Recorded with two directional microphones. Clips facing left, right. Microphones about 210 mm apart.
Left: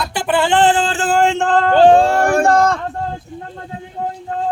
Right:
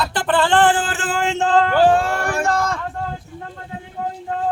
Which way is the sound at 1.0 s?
50° left (ahead or behind).